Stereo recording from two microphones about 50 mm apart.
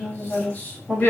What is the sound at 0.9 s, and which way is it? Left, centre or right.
Speech, centre.